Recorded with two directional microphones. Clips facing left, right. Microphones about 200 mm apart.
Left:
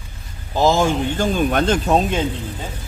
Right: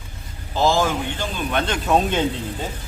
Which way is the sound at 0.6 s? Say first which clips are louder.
Left 3 dB; 20° left (ahead or behind).